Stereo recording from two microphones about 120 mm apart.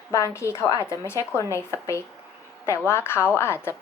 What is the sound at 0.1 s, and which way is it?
Speech, 25° left (ahead or behind).